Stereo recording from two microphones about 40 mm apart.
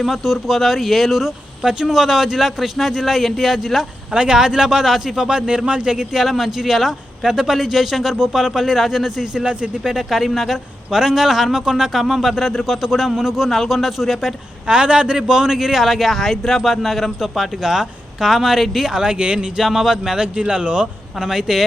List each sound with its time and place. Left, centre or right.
0.0 s a man's voice: centre
4.1 s speech: right
4.4 s a man's voice: centre
6.1 s a man's voice: centre
9.3 s speech: right
10.1 s a man's voice: centre
10.9 s a man's voice: centre
13.5 s a man's voice: centre
14.7 s a man's voice: right; by 18.9 s centre
18.9 s speech: right
19.5 s a man's voice: centre
20.1 s speech: right
21.2 s a man's voice: centre